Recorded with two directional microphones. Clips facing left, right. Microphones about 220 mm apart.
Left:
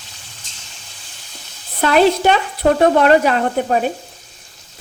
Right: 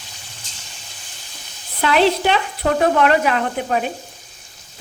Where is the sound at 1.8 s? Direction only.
45° left (ahead or behind).